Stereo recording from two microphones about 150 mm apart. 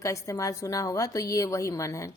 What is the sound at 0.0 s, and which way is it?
A woman's voice, 20° left (ahead or behind).